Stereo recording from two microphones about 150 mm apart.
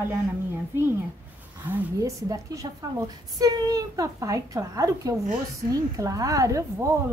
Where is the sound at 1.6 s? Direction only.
20° right (ahead or behind).